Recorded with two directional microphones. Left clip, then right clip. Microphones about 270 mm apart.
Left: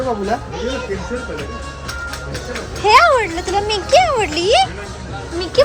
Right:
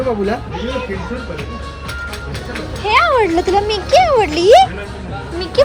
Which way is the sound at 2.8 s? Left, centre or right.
Centre.